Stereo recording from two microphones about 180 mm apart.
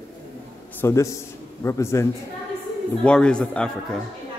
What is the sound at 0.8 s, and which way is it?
A man's voice, 15° left (ahead or behind).